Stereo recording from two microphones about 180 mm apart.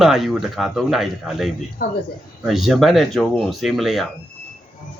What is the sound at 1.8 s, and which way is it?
Speech, 50° left (ahead or behind).